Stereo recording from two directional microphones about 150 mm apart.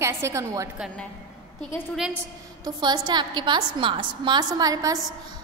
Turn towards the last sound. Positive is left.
turn(degrees=-25)  # may be behind; listen again after turning